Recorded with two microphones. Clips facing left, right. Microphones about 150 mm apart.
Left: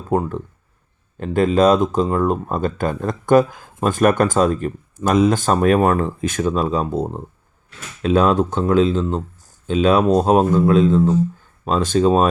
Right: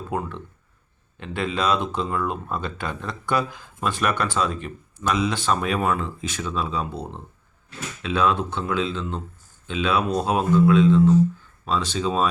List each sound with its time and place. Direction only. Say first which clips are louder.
0.1 s speech: left 10 dB; 40° left (ahead or behind)